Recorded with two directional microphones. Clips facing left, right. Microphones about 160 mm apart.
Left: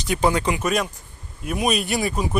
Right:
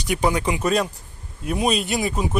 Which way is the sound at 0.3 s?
20° right (ahead or behind).